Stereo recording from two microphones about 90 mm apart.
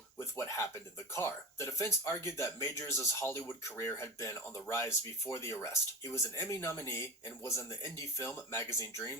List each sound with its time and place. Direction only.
0.2 s speech: 35° left (ahead or behind)